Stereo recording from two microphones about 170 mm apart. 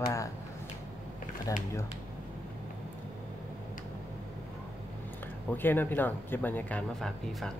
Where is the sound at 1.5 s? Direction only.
20° left (ahead or behind).